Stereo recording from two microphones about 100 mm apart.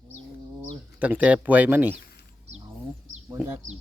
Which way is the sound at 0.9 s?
15° right (ahead or behind).